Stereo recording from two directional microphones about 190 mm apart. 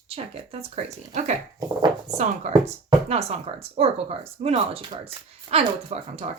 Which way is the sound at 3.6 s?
30° right (ahead or behind).